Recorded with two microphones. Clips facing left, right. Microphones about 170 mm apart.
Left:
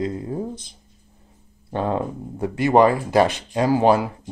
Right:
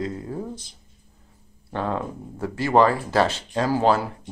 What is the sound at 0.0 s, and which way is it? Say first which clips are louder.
Speech: left 4 dB; 20° left (ahead or behind).